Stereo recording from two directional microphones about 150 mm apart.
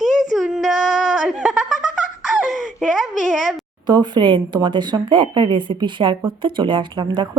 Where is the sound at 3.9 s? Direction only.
30° right (ahead or behind).